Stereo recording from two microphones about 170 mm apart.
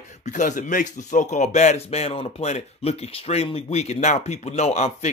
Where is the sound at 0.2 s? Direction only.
45° left (ahead or behind).